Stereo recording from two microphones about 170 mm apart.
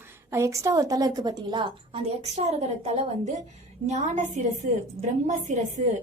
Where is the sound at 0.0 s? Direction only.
15° right (ahead or behind).